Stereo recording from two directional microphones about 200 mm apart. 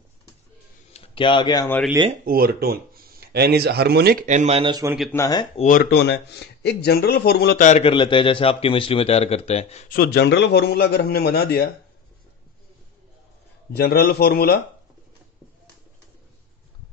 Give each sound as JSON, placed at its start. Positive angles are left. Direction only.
{"t": 0.9, "sound": "speech", "side_deg": 25}
{"t": 2.2, "sound": "speech", "side_deg": -50}
{"t": 5.1, "sound": "speech", "side_deg": 15}
{"t": 5.6, "sound": "speech", "side_deg": 45}
{"t": 7.6, "sound": "a man's voice", "side_deg": 35}
{"t": 9.8, "sound": "speech", "side_deg": 50}
{"t": 13.7, "sound": "speech", "side_deg": 50}